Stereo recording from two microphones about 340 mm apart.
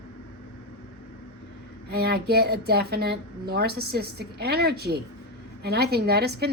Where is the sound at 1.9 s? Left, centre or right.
Right.